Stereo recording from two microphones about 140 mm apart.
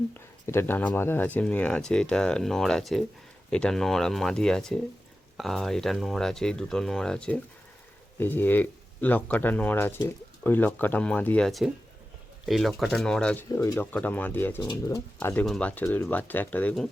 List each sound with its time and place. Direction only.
0.4 s speech: 15° left (ahead or behind)
14.6 s speech: 25° left (ahead or behind)
15.4 s speech: 5° left (ahead or behind)